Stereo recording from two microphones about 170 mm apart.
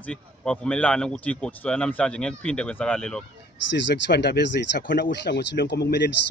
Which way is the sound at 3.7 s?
90° left.